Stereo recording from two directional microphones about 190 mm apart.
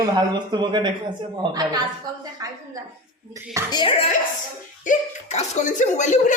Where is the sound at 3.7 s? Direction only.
30° left (ahead or behind).